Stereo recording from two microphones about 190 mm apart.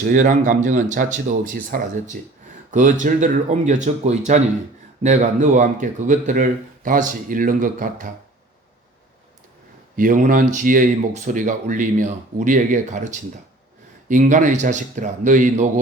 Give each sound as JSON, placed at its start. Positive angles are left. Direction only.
{"t": 0.0, "sound": "speech", "side_deg": -45}
{"t": 10.0, "sound": "speech", "side_deg": -45}